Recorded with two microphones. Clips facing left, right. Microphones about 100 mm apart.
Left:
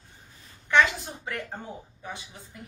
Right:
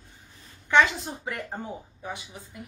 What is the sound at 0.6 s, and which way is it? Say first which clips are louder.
Speech: right 1 dB; 15° right (ahead or behind).